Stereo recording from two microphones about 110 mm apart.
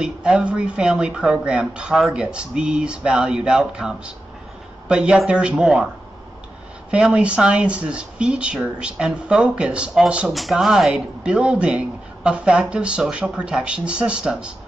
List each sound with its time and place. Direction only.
0.0 s speech: 10° right (ahead or behind)
6.9 s speech: 10° right (ahead or behind)